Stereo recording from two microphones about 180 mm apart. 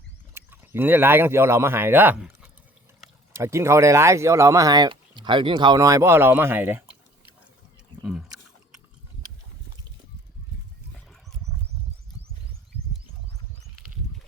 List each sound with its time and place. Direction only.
0.3 s speech: 10° right (ahead or behind)
3.3 s speech: 15° right (ahead or behind)